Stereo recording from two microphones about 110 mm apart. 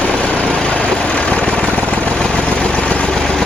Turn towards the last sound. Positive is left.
turn(degrees=5)  # may be behind; listen again after turning